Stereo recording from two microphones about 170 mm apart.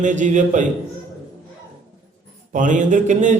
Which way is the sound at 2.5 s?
50° right (ahead or behind).